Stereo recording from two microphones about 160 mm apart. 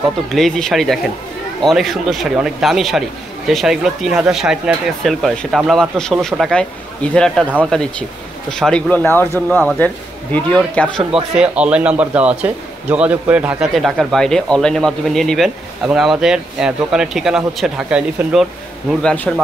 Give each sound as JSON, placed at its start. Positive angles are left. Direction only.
{"t": 0.3, "sound": "a man's voice", "side_deg": 5}
{"t": 11.3, "sound": "a man's voice", "side_deg": -5}